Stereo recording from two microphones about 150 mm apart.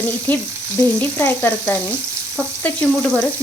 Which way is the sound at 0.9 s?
15° left (ahead or behind).